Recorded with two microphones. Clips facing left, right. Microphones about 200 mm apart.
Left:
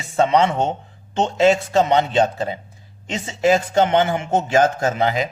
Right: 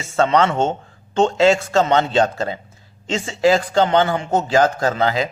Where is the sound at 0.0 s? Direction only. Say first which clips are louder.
Even; 15° left (ahead or behind).